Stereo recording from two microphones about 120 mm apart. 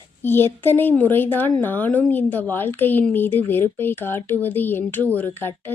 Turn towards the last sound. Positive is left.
turn(degrees=15)  # may be behind; listen again after turning